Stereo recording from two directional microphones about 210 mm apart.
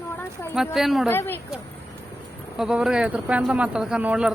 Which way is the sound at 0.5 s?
Centre (ahead or behind).